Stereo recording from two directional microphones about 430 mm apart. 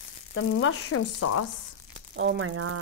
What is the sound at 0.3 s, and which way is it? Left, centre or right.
Speech, left.